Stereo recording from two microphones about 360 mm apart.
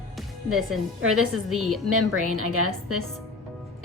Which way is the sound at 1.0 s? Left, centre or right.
Right.